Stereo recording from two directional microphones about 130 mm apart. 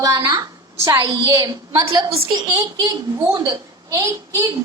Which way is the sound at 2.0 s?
45° right (ahead or behind).